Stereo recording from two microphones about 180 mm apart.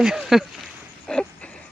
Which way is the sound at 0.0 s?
5° right (ahead or behind).